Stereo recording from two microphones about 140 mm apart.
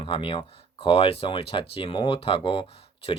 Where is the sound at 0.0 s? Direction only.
40° left (ahead or behind).